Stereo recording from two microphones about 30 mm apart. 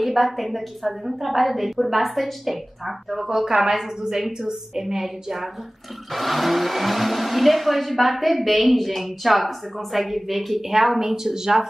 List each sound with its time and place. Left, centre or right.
0.0 s speech: centre
3.6 s a woman's voice: centre
6.1 s a woman's voice: centre